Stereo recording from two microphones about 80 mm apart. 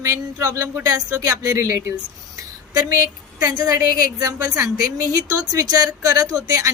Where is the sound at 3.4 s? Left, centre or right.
Right.